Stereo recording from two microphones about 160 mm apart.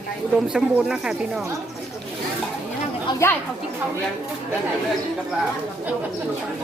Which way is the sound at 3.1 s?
25° left (ahead or behind).